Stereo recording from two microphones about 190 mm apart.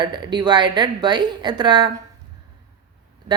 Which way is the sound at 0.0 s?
25° right (ahead or behind).